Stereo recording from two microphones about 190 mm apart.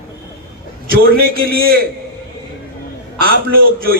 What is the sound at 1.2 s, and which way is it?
Speech, 55° right (ahead or behind).